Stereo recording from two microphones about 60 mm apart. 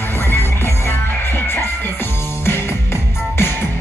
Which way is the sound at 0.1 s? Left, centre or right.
Left.